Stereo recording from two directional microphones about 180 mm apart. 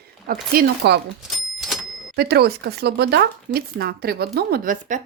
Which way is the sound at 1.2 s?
Centre (ahead or behind).